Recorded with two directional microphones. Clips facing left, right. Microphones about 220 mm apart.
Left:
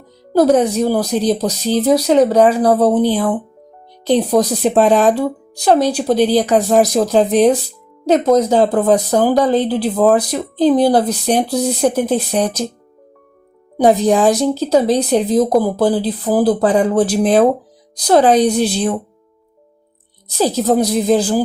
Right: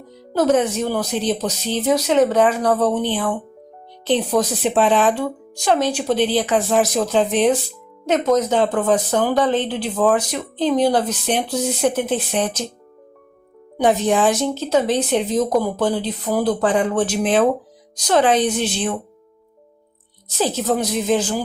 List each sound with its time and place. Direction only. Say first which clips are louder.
0.3 s speech: left 5 dB; 35° left (ahead or behind)
13.7 s speech: left 5 dB; 35° left (ahead or behind)
20.4 s speech: left 6 dB; 35° left (ahead or behind)